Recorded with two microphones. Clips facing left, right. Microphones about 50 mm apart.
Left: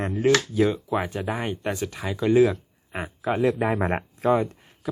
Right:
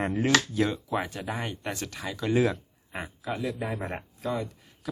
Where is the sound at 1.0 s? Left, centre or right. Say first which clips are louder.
Left 5 dB; left.